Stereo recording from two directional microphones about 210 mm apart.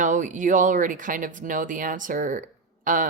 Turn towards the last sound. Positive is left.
turn(degrees=-40)  # may be behind; listen again after turning